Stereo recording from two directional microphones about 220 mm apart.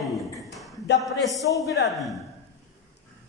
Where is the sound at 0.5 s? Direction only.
Centre (ahead or behind).